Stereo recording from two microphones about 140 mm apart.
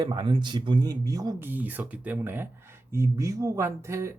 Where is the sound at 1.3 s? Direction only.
15° right (ahead or behind).